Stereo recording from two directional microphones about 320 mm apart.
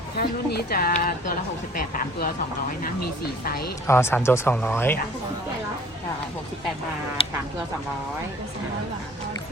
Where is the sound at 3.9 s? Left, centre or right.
Centre.